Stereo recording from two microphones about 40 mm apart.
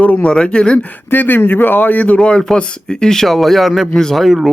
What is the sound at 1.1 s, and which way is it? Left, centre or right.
Speech, left.